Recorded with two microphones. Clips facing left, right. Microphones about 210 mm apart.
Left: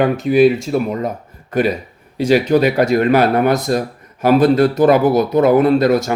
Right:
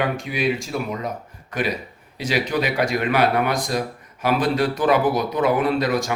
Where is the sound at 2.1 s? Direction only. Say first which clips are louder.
Left 10 dB; 45° left (ahead or behind).